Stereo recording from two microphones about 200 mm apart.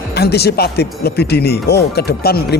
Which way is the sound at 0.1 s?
55° left (ahead or behind).